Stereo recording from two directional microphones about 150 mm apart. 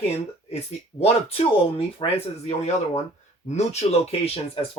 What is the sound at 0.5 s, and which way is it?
Speech, 40° left (ahead or behind).